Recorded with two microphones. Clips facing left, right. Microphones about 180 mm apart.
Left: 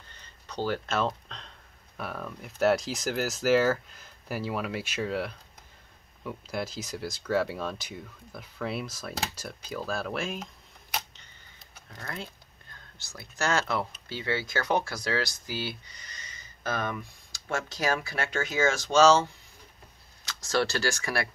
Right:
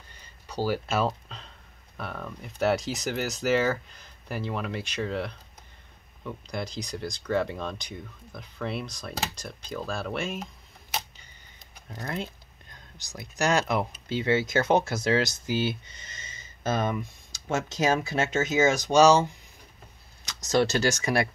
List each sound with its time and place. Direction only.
0.1 s a sound: 10° right (ahead or behind)
2.0 s speech: 5° left (ahead or behind)
11.7 s speech: 20° right (ahead or behind)